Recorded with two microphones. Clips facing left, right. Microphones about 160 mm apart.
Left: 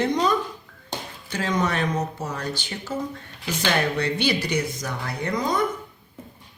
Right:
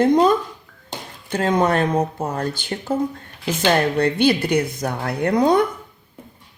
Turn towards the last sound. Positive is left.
turn(degrees=-65)  # may be behind; listen again after turning